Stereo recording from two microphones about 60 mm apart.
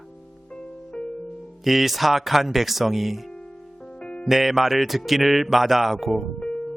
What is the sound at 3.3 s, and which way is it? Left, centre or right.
Music, centre.